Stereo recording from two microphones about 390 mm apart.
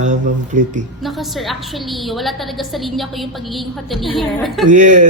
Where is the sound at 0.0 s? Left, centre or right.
Centre.